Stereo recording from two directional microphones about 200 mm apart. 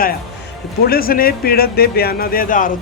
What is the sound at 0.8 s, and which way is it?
Speech, 50° left (ahead or behind).